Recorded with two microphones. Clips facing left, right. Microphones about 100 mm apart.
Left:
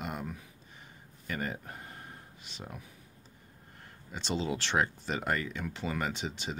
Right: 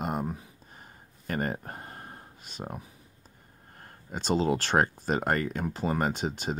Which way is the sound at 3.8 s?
45° right (ahead or behind).